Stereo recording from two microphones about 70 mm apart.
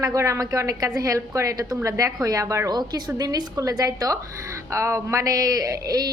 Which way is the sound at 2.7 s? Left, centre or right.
Right.